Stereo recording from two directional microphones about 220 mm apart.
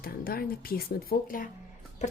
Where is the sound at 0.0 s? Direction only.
40° left (ahead or behind).